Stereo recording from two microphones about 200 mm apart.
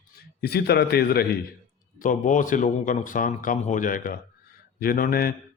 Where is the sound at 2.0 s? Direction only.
40° left (ahead or behind).